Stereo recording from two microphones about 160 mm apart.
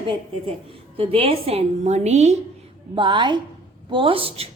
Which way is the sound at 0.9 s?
35° right (ahead or behind).